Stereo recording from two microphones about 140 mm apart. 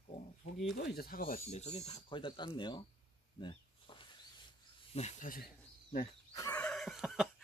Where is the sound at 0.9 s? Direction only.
90° left.